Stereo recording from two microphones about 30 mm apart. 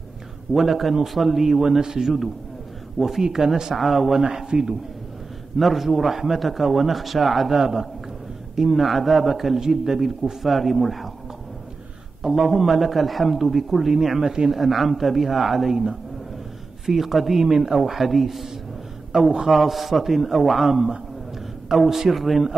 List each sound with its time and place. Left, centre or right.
0.5 s speech: centre
3.2 s speech: centre
3.7 s speech: centre
4.2 s speech: right
5.6 s a man's voice: centre
8.5 s a man's voice: centre
12.2 s a man's voice: centre
14.2 s speech: right
14.5 s speech: centre
16.8 s a man's voice: centre
19.1 s speech: centre
19.5 s a man's voice: centre